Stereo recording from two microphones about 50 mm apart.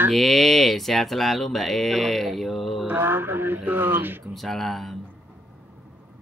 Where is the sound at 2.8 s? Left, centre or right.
Right.